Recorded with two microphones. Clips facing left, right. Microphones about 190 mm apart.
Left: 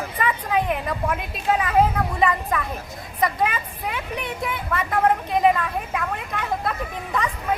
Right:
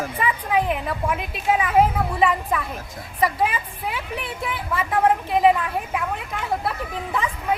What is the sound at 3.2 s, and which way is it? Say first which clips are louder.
A woman's voice: right 1 dB; 5° right (ahead or behind).